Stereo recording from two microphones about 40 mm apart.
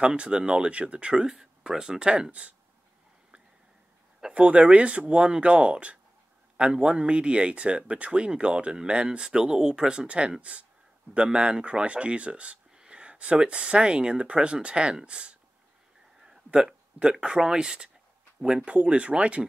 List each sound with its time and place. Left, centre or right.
0.0 s speech: right
4.3 s a man's voice: right
9.3 s speech: centre
12.8 s a sound: right
13.5 s speech: right
17.1 s speech: centre
18.8 s speech: right